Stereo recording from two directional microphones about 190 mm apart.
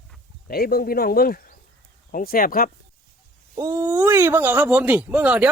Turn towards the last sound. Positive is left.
turn(degrees=-5)  # may be behind; listen again after turning